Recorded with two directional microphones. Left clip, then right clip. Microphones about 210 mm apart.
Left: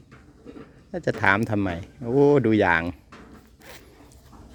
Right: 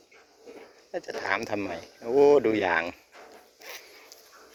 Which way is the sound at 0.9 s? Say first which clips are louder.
Left 8 dB; 25° left (ahead or behind).